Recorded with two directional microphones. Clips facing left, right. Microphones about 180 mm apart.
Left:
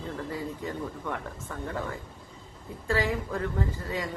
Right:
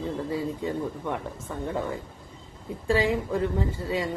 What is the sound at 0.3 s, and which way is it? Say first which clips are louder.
Speech: right 5 dB; 20° right (ahead or behind).